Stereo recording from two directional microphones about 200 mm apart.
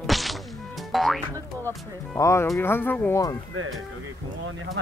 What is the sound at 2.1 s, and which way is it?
Speech, 15° left (ahead or behind).